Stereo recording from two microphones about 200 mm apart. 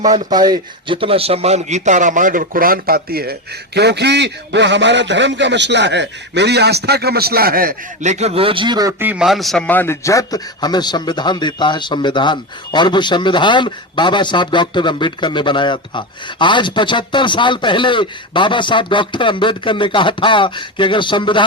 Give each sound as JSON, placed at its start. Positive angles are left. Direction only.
{"t": 0.3, "sound": "a man's voice", "side_deg": -20}